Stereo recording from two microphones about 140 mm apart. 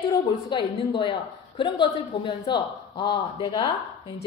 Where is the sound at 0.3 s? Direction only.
40° left (ahead or behind).